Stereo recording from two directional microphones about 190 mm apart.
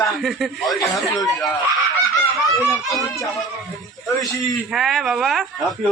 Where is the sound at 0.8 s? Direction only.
20° left (ahead or behind).